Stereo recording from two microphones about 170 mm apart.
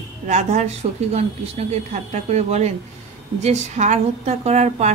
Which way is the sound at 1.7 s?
40° right (ahead or behind).